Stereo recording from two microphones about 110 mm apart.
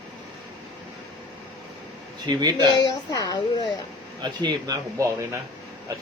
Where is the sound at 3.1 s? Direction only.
40° left (ahead or behind).